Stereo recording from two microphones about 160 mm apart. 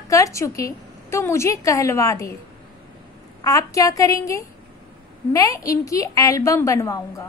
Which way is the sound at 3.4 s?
20° left (ahead or behind).